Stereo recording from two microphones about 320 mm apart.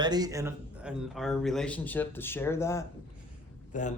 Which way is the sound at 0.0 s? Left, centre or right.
Centre.